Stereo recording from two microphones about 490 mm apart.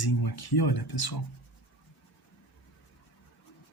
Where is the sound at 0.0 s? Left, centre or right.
Left.